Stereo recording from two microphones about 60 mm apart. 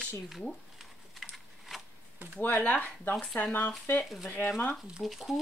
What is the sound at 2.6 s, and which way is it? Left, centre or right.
Speech, left.